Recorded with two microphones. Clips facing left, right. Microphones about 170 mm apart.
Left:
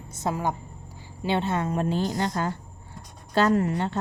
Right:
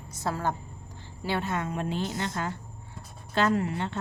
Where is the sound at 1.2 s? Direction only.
25° left (ahead or behind).